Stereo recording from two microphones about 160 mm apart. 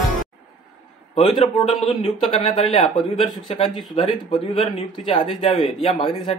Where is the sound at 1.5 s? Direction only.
40° left (ahead or behind).